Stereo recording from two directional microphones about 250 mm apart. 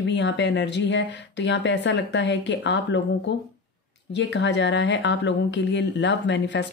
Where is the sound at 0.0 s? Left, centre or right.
Left.